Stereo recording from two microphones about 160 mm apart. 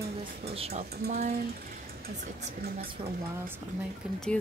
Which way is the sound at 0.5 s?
40° right (ahead or behind).